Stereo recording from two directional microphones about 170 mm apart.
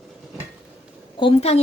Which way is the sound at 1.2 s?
35° left (ahead or behind).